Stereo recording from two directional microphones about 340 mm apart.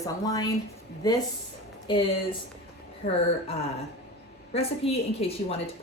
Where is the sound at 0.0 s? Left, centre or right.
Centre.